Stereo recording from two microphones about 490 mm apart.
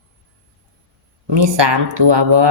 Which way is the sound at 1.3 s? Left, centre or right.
Right.